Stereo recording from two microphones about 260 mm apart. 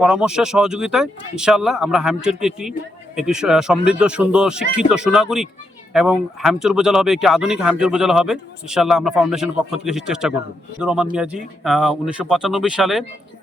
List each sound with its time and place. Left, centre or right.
0.0 s speech: centre